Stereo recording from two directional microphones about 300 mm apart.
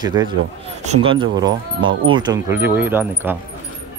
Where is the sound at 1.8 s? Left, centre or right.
Right.